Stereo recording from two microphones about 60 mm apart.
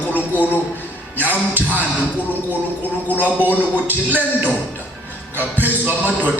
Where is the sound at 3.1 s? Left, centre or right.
Right.